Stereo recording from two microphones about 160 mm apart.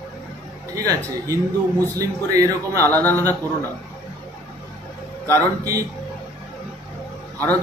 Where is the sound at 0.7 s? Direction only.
20° right (ahead or behind).